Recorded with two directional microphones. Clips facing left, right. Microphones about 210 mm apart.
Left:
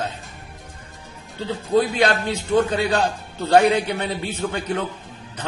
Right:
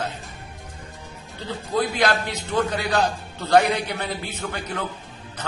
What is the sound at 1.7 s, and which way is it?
A man's voice, 25° left (ahead or behind).